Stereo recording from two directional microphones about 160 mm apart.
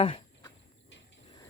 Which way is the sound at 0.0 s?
30° left (ahead or behind).